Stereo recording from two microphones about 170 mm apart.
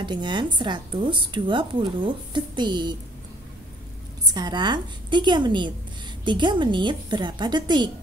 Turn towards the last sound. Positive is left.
turn(degrees=-25)  # may be behind; listen again after turning